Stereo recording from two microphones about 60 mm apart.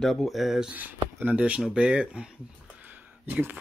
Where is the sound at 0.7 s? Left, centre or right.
Right.